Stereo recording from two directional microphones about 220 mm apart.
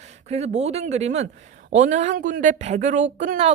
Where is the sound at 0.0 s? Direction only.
30° right (ahead or behind).